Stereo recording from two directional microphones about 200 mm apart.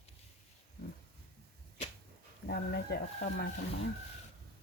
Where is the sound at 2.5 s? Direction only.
55° left (ahead or behind).